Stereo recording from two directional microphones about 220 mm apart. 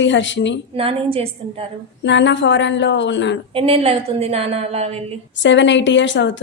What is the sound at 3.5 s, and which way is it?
A woman's voice, 25° right (ahead or behind).